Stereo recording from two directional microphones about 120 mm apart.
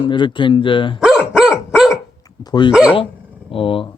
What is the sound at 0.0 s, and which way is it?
Speech, 45° left (ahead or behind).